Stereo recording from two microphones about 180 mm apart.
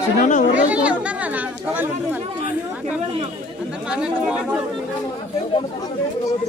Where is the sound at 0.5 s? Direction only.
5° right (ahead or behind).